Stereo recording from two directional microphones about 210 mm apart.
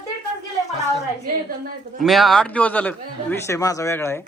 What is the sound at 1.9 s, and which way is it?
A man's voice, centre (ahead or behind).